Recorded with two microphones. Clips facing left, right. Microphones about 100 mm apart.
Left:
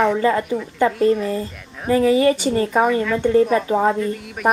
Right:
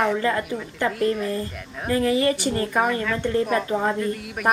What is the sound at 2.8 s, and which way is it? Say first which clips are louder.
A woman's voice: left 6 dB; 5° left (ahead or behind).